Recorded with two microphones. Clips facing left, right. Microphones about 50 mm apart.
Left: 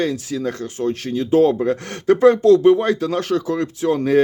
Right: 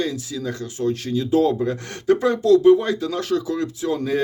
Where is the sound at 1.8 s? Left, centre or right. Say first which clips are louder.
Left 7 dB; left.